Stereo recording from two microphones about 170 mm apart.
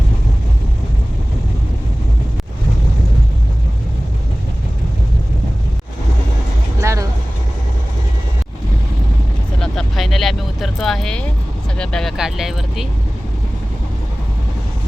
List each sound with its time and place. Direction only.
6.8 s vehicle: 20° right (ahead or behind)
9.6 s vehicle: centre (ahead or behind)